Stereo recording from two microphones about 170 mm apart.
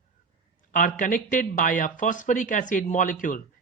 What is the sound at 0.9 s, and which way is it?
Speech, 50° left (ahead or behind).